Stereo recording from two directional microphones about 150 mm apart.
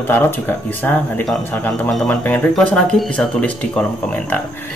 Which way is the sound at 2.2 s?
10° left (ahead or behind).